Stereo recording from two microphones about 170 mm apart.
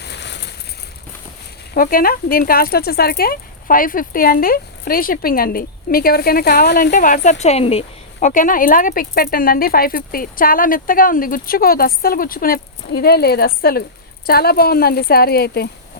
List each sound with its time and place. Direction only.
0.0 s a sound: 85° left
1.7 s speech: 55° left (ahead or behind)
6.9 s speech: 50° left (ahead or behind)
8.3 s speech: 50° left (ahead or behind); by 15.7 s 70° left (ahead or behind)